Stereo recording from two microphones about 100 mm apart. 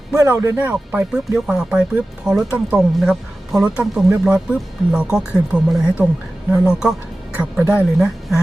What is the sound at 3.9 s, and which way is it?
Speech, 5° right (ahead or behind).